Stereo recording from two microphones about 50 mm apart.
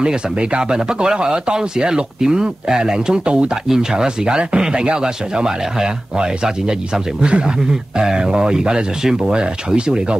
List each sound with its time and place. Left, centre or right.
0.0 s speech: centre